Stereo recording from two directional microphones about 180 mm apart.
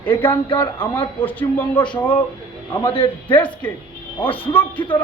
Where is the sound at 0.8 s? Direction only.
10° left (ahead or behind).